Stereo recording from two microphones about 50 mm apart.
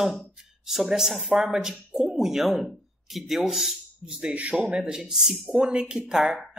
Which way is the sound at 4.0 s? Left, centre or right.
Centre.